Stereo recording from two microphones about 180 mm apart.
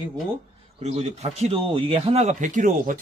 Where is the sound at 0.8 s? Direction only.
35° right (ahead or behind).